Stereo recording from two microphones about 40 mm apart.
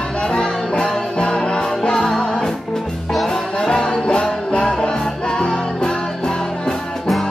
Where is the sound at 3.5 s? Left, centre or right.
Centre.